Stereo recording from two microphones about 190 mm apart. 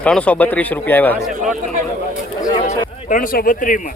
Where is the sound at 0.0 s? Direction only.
5° left (ahead or behind).